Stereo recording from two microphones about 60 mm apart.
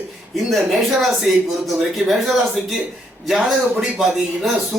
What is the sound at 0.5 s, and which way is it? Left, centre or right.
A man's voice, centre.